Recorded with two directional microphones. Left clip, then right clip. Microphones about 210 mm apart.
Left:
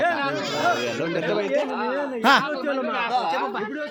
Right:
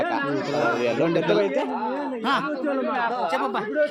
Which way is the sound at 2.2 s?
50° left (ahead or behind).